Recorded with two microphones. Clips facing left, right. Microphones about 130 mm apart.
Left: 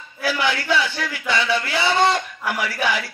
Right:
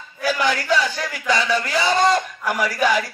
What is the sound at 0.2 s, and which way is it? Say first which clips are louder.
Speech: right 1 dB; 40° right (ahead or behind).